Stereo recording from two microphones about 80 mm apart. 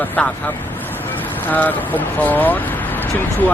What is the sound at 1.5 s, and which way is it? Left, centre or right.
Speech, centre.